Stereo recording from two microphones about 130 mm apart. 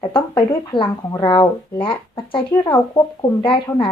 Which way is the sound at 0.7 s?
40° left (ahead or behind).